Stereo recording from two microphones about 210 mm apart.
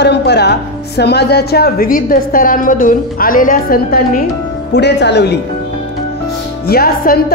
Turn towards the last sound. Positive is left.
turn(degrees=45)  # may be behind; listen again after turning